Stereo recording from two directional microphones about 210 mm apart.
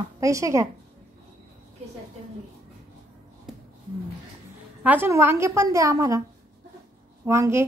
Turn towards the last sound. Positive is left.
turn(degrees=-15)  # may be behind; listen again after turning